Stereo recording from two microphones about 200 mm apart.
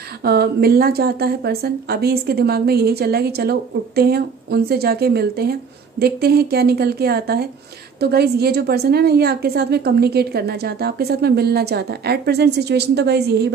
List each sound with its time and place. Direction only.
0.2 s a woman's voice: 50° right (ahead or behind)